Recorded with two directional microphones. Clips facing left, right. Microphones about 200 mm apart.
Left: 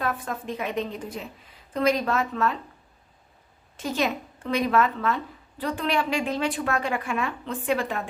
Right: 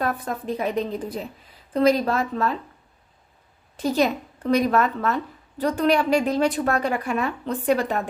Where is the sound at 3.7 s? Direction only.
35° right (ahead or behind).